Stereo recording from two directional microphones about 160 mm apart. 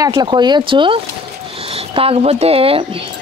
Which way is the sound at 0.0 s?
30° right (ahead or behind).